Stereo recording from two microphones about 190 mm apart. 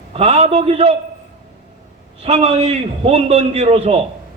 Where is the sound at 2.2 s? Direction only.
35° right (ahead or behind).